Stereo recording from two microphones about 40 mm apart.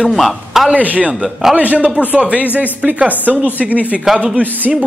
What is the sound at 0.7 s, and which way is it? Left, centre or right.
Speech, right.